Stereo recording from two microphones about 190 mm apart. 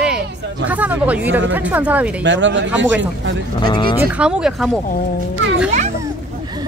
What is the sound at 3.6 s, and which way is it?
Speech, 25° left (ahead or behind).